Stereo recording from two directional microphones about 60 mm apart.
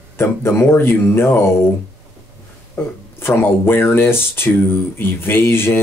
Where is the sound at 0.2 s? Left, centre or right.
Left.